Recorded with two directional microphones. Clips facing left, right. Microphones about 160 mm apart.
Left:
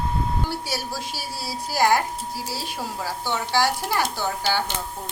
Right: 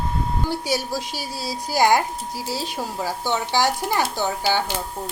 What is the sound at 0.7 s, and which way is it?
Speech, 20° right (ahead or behind).